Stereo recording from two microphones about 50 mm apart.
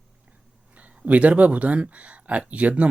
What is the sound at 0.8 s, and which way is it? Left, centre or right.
Speech, right.